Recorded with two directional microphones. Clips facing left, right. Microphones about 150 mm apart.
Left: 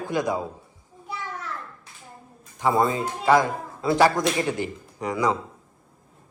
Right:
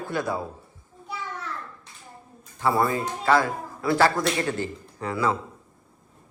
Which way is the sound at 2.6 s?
20° left (ahead or behind).